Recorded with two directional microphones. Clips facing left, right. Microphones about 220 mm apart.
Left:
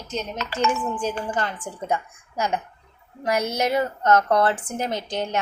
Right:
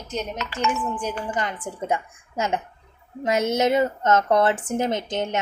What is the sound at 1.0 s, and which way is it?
A woman's voice, 15° right (ahead or behind).